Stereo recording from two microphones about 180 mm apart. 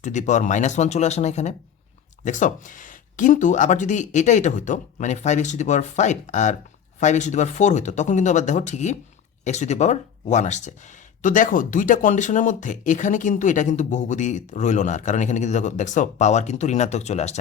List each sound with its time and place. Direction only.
0.0 s speech: 40° left (ahead or behind)